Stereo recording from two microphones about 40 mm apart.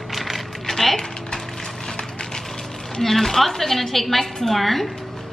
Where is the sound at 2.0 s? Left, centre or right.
Centre.